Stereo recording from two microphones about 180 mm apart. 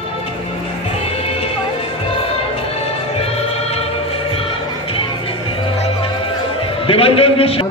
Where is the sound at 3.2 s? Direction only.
35° left (ahead or behind).